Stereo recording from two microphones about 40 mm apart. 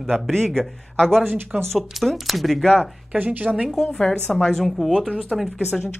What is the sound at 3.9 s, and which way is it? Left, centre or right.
A woman's voice, centre.